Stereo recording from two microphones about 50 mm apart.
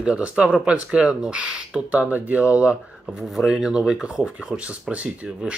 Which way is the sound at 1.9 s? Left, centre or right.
Right.